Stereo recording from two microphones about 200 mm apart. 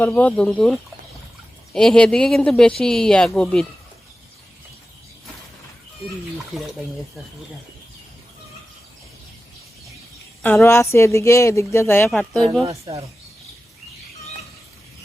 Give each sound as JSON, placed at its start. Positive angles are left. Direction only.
{"t": 0.0, "sound": "speech", "side_deg": 5}
{"t": 6.5, "sound": "speech", "side_deg": 0}
{"t": 10.4, "sound": "speech", "side_deg": 10}
{"t": 12.6, "sound": "speech", "side_deg": -30}